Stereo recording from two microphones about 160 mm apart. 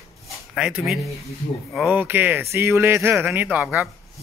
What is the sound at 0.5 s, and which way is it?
Speech, 5° right (ahead or behind).